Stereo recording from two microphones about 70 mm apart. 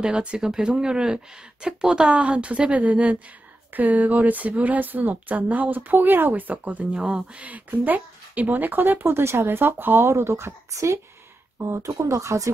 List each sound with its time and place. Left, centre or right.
0.0 s speech: centre; by 12.4 s right